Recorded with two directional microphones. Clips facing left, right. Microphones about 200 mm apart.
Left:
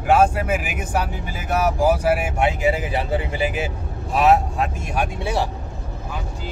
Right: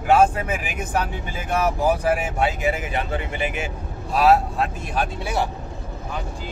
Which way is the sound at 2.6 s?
30° left (ahead or behind).